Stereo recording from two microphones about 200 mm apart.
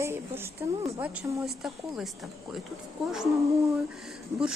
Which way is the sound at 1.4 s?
Centre (ahead or behind).